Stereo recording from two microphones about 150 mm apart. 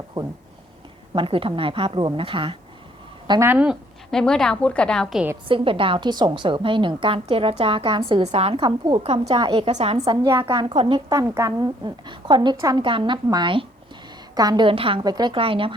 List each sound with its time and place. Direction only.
1.1 s a woman's voice: 35° right (ahead or behind)
3.4 s speech: 10° right (ahead or behind)
4.1 s a woman's voice: 5° left (ahead or behind)
5.5 s a woman's voice: 35° right (ahead or behind)
11.1 s a woman's voice: 20° right (ahead or behind); by 15.7 s 35° right (ahead or behind)